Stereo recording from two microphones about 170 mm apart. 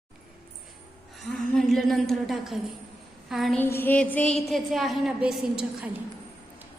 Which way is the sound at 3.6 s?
10° left (ahead or behind).